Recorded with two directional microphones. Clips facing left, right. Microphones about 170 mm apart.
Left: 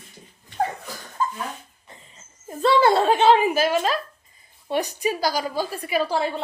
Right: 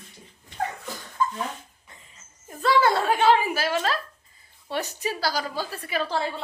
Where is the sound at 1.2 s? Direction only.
35° left (ahead or behind).